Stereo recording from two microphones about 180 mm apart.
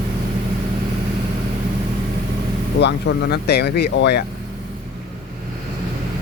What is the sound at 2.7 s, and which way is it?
Speech, 70° left (ahead or behind).